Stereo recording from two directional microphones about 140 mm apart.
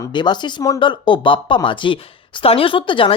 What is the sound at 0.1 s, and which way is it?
Speech, 30° left (ahead or behind).